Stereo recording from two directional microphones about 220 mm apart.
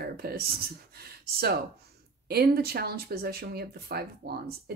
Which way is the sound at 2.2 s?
45° right (ahead or behind).